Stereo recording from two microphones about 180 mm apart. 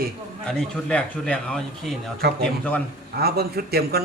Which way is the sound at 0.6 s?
5° left (ahead or behind).